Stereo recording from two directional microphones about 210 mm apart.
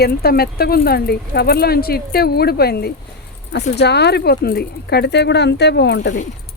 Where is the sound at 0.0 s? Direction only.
45° left (ahead or behind).